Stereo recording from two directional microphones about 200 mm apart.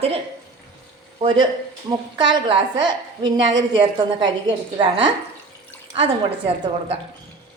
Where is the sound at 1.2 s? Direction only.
25° right (ahead or behind).